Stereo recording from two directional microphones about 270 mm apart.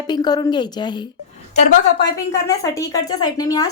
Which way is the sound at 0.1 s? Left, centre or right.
Centre.